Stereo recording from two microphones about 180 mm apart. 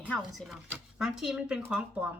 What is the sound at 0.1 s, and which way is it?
Speech, centre (ahead or behind).